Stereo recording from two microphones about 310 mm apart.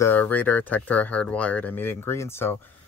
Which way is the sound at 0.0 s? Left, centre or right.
Centre.